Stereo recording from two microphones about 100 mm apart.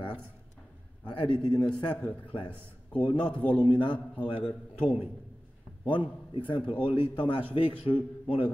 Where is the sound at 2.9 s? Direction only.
55° left (ahead or behind).